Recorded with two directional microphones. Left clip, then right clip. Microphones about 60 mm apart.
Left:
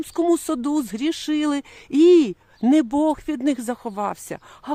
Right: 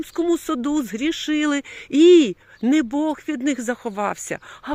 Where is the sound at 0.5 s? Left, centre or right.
Left.